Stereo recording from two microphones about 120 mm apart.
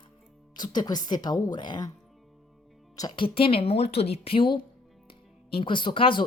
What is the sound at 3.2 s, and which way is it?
A woman's voice, 50° left (ahead or behind).